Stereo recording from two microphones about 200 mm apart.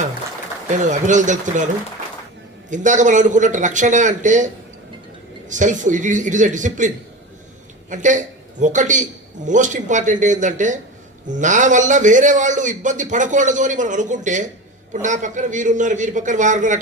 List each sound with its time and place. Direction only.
0.9 s a man's voice: 40° right (ahead or behind)